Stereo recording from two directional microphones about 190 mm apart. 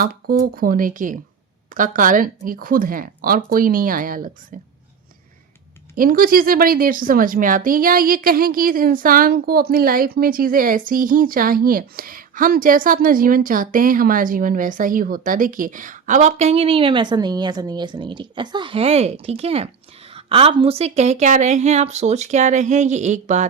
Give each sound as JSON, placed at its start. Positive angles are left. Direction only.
{"t": 0.0, "sound": "speech", "side_deg": -50}
{"t": 6.0, "sound": "a woman's voice", "side_deg": -50}